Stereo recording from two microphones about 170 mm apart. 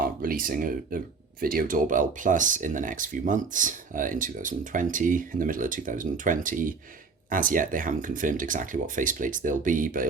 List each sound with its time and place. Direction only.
0.0 s speech: 55° right (ahead or behind)